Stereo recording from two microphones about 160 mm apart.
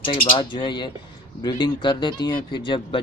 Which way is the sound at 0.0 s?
30° left (ahead or behind).